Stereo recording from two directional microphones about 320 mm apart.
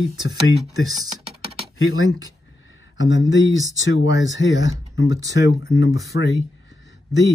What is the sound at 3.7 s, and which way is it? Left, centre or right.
Speech, centre.